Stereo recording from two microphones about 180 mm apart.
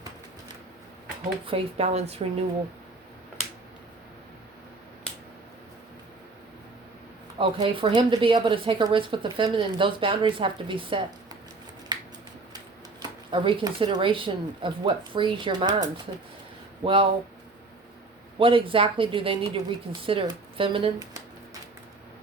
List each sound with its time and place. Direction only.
1.5 s speech: 35° right (ahead or behind)
7.3 s a woman's voice: 30° right (ahead or behind)
11.9 s a sound: 25° right (ahead or behind)
12.5 s a woman's voice: 25° right (ahead or behind)
18.3 s a woman's voice: 30° right (ahead or behind)